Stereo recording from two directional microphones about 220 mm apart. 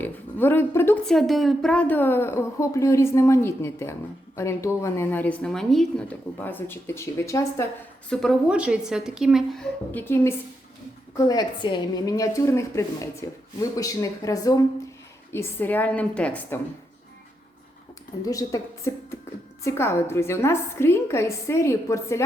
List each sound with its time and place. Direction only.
0.0 s speech: 10° left (ahead or behind)
8.1 s a woman's voice: centre (ahead or behind)
18.3 s speech: 15° left (ahead or behind)